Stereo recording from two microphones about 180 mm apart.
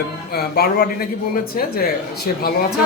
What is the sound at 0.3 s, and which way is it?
Speech, 60° left (ahead or behind).